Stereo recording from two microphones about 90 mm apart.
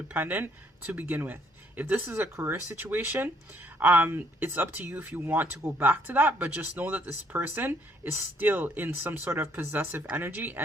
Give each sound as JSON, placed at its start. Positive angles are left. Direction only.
{"t": 0.1, "sound": "speech", "side_deg": -20}